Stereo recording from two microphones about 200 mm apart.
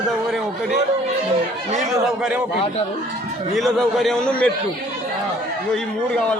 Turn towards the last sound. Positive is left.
turn(degrees=5)  # may be behind; listen again after turning